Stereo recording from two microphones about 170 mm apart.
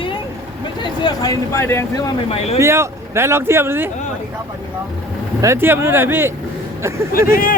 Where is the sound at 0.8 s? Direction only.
25° left (ahead or behind).